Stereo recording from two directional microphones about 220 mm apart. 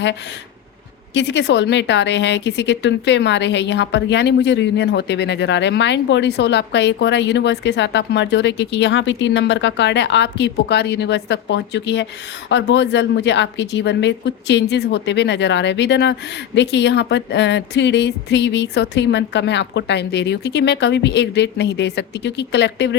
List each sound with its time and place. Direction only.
1.1 s a woman's voice: 55° left (ahead or behind)